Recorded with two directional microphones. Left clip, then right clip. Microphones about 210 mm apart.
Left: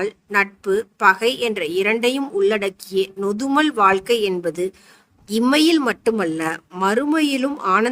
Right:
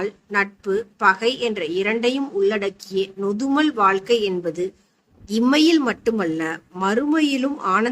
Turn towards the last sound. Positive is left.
turn(degrees=55)  # may be behind; listen again after turning